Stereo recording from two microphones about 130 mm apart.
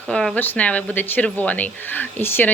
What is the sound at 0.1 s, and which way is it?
A woman's voice, 5° left (ahead or behind).